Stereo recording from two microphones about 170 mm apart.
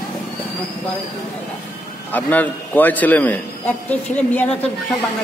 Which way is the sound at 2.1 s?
10° left (ahead or behind).